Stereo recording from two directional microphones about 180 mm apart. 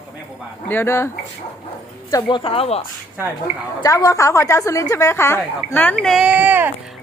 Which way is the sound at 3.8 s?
20° left (ahead or behind).